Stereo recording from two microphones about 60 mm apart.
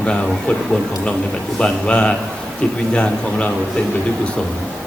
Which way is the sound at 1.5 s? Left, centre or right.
Centre.